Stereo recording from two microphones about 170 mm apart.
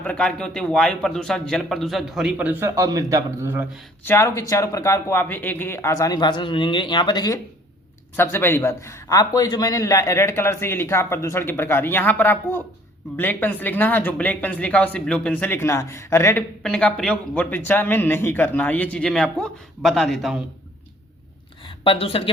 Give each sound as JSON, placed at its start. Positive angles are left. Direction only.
{"t": 0.0, "sound": "a man's voice", "side_deg": 5}
{"t": 4.0, "sound": "a man's voice", "side_deg": 15}
{"t": 8.1, "sound": "a man's voice", "side_deg": 15}
{"t": 16.6, "sound": "a man's voice", "side_deg": 5}
{"t": 21.6, "sound": "a sound", "side_deg": 30}